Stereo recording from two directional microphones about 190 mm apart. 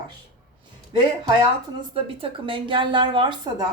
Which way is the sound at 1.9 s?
30° right (ahead or behind).